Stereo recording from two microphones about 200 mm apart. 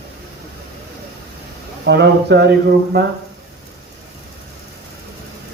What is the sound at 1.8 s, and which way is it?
A man's voice, 55° right (ahead or behind).